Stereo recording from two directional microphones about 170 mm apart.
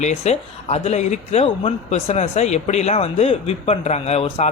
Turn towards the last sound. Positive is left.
turn(degrees=35)  # may be behind; listen again after turning